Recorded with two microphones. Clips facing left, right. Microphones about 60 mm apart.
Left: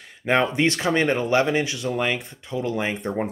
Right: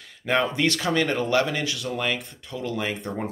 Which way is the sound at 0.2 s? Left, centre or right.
Left.